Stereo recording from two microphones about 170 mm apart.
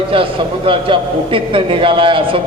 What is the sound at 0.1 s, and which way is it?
A man's voice, 30° right (ahead or behind).